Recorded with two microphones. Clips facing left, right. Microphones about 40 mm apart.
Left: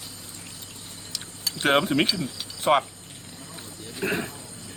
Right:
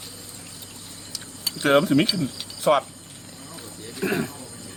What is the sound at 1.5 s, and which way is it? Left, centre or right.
Speech, left.